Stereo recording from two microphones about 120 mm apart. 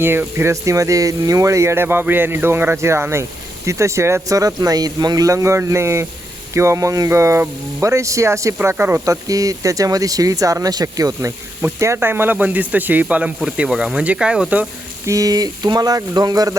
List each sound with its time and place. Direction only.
0.0 s speech: 20° right (ahead or behind)
15.0 s speech: 30° right (ahead or behind)